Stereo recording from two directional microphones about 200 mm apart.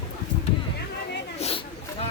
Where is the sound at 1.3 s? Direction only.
30° left (ahead or behind).